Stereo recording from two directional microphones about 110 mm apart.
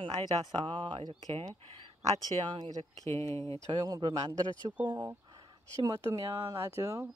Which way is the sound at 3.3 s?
60° right (ahead or behind).